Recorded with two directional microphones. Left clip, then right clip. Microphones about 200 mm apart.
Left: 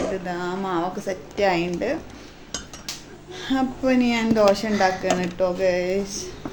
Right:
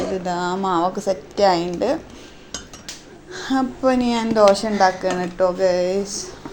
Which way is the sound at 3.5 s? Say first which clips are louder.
Right 3 dB; 15° right (ahead or behind).